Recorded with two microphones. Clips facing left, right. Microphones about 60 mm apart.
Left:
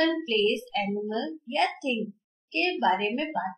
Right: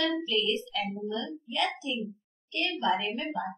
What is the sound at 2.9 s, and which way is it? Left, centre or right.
Speech, left.